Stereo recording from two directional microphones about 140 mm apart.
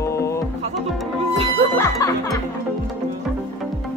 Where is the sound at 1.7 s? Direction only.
25° left (ahead or behind).